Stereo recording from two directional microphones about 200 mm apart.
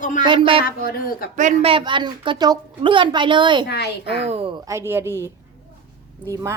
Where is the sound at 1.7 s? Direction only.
25° right (ahead or behind).